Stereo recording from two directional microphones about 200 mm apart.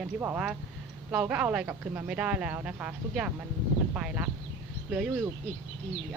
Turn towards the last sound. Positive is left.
turn(degrees=-5)  # may be behind; listen again after turning